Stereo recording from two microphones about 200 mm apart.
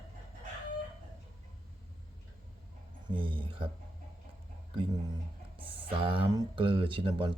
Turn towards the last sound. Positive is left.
turn(degrees=-25)  # may be behind; listen again after turning